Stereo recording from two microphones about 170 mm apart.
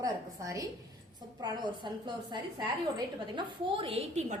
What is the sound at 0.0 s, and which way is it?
A woman's voice, 20° right (ahead or behind).